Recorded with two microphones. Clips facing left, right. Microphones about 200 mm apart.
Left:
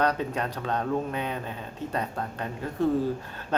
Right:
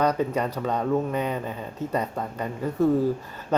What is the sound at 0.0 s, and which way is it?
Speech, 10° right (ahead or behind).